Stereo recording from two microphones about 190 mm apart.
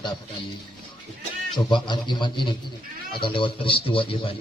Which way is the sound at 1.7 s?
25° left (ahead or behind).